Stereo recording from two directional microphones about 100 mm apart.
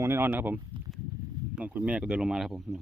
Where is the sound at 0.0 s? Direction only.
25° right (ahead or behind).